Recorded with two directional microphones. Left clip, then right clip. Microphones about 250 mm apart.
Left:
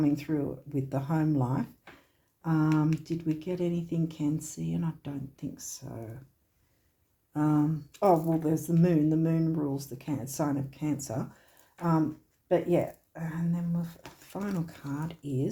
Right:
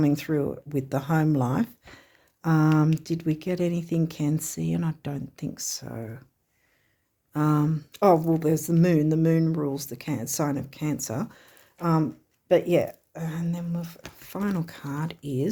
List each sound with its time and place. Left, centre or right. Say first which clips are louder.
0.0 s speech: right 4 dB; right
7.3 s speech: right 3 dB; right
12.5 s speech: right 5 dB; right